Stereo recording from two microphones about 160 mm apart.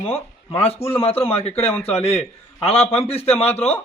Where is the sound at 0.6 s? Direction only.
40° left (ahead or behind).